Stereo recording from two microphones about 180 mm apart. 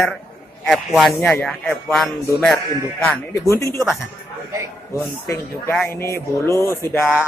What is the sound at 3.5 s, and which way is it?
Speech, 15° left (ahead or behind).